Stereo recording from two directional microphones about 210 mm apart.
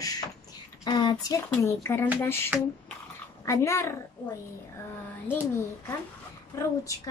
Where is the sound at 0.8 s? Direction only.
20° left (ahead or behind).